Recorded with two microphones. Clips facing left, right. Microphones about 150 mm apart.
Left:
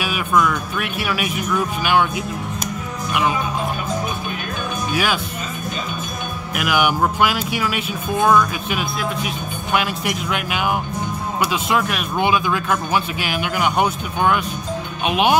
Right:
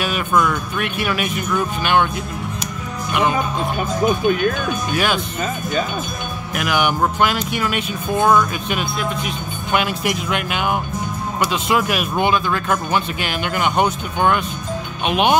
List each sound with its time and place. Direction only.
0.3 s speech: centre (ahead or behind)
3.1 s speech: 5° left (ahead or behind)
4.9 s speech: 5° left (ahead or behind)
6.5 s speech: 5° left (ahead or behind)
12.3 s speech: 5° left (ahead or behind)